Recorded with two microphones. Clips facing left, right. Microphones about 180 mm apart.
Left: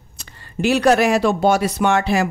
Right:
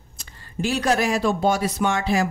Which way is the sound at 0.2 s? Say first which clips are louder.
Left 5 dB; 70° left (ahead or behind).